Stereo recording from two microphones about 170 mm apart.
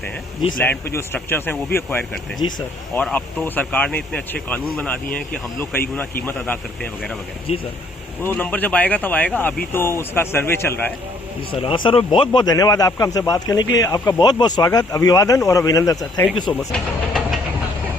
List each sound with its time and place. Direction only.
0.6 s speech: 15° left (ahead or behind)
2.4 s speech: 35° left (ahead or behind)
2.9 s speech: 10° left (ahead or behind)
8.2 s speech: 10° left (ahead or behind)
11.6 s a man's voice: 30° left (ahead or behind)
16.5 s speech: 5° left (ahead or behind)